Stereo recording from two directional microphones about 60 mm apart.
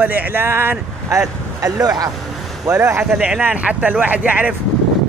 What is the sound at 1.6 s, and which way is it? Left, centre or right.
Speech, right.